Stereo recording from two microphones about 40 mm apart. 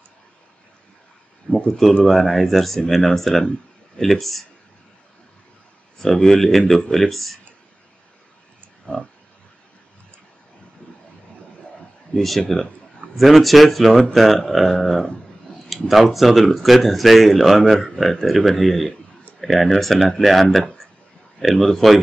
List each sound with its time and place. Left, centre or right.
1.5 s a sound: centre
2.0 s speech: centre
5.9 s speech: centre
8.8 s pig: left
12.4 s speech: centre
13.1 s speech: centre